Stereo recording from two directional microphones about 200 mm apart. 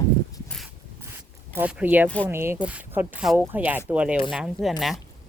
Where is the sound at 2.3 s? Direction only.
10° right (ahead or behind).